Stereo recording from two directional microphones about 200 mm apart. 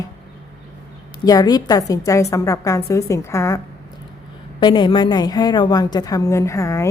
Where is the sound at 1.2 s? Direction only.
20° left (ahead or behind).